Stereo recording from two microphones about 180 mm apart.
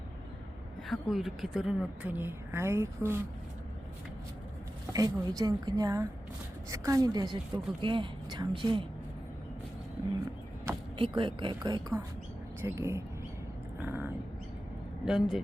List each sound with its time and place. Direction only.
0.9 s a woman's voice: centre (ahead or behind)
4.9 s a woman's voice: 20° right (ahead or behind)
10.9 s a woman's voice: 30° right (ahead or behind); by 15.4 s centre (ahead or behind)